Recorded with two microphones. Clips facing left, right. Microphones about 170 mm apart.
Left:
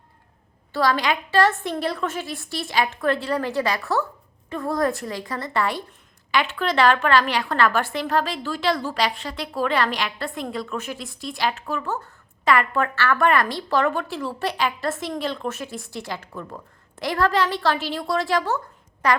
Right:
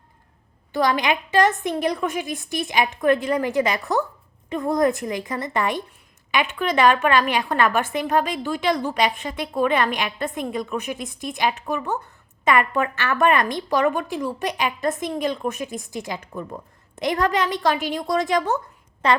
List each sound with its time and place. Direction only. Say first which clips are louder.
0.7 s a woman's voice: right 1 dB; 20° right (ahead or behind)